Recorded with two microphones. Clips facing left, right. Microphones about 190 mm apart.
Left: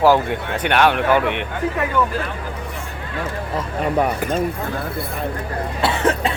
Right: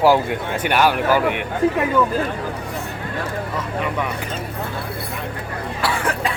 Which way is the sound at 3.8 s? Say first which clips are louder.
Left 5 dB; 40° left (ahead or behind).